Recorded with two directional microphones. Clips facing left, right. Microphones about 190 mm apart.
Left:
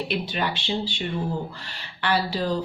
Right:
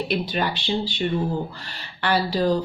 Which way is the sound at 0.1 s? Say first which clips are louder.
Right 3 dB; 40° right (ahead or behind).